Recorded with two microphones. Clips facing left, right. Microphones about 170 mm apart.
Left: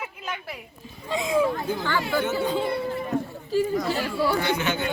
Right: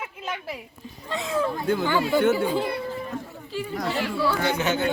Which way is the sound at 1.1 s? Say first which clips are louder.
Left 3 dB; 15° left (ahead or behind).